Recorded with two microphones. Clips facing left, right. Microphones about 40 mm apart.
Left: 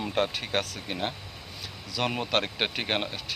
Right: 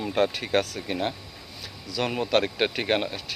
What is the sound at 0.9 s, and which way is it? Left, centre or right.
Speech, left.